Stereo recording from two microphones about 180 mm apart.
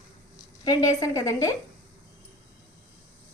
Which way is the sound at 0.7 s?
20° left (ahead or behind).